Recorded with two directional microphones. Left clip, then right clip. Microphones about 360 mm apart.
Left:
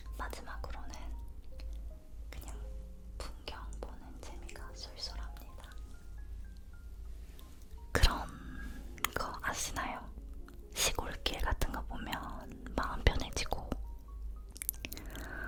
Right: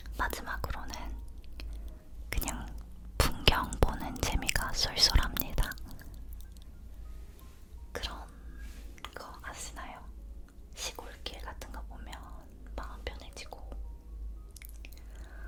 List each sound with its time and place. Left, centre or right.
0.2 s whispering: centre
2.3 s chewing: right
3.2 s whispering: right
7.9 s whispering: left
14.5 s chewing: left